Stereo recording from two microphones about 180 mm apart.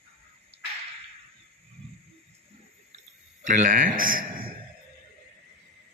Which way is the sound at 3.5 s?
45° right (ahead or behind).